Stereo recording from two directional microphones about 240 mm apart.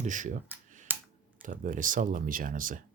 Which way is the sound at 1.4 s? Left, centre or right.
Right.